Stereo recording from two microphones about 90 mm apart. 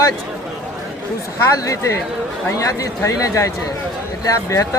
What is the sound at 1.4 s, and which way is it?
A man's voice, 35° left (ahead or behind).